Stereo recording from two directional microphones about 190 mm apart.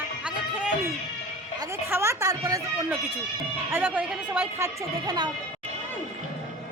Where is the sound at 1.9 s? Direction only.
15° right (ahead or behind).